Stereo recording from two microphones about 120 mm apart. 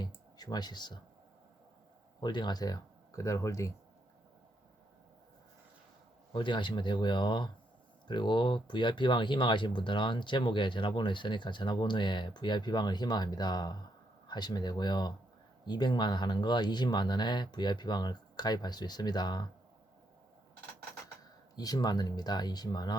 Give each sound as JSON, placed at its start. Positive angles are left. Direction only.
{"t": 0.0, "sound": "a sound", "side_deg": 35}
{"t": 2.2, "sound": "speech", "side_deg": 40}
{"t": 6.3, "sound": "speech", "side_deg": 40}
{"t": 21.5, "sound": "speech", "side_deg": 30}